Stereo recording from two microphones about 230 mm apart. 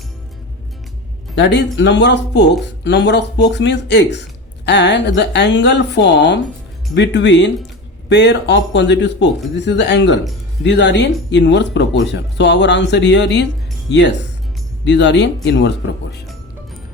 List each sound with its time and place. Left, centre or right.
1.4 s speech: left